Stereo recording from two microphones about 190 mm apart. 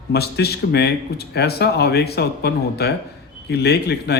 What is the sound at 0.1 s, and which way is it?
Speech, 55° left (ahead or behind).